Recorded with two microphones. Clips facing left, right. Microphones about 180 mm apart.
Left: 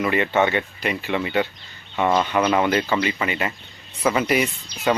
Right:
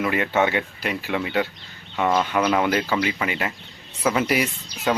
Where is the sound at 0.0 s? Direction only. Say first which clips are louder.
Left 1 dB; 5° right (ahead or behind).